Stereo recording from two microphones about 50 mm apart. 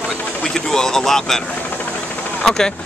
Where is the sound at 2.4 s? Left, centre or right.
Centre.